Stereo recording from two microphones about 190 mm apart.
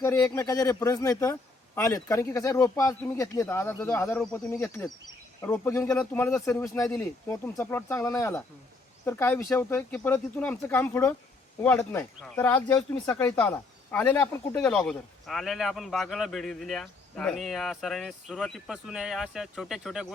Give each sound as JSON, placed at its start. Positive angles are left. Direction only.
{"t": 0.0, "sound": "a man's voice", "side_deg": 15}